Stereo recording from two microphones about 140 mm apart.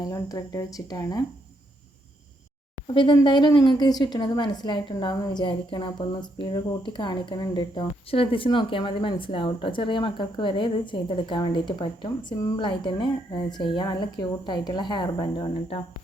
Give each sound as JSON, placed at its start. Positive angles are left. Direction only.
{"t": 0.0, "sound": "speech", "side_deg": 25}
{"t": 2.8, "sound": "speech", "side_deg": 35}